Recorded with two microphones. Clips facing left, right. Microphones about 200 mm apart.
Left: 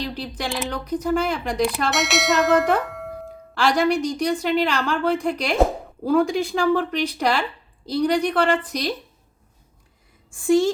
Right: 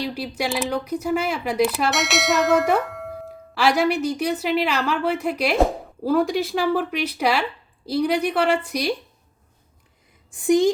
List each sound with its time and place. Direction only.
0.0 s speech: 10° right (ahead or behind)
10.3 s speech: 20° right (ahead or behind)